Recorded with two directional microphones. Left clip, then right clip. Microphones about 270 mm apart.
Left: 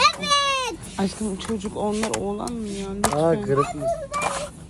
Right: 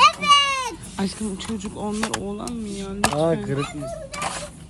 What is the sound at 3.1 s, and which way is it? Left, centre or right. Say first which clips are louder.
Speech: left 2 dB; right.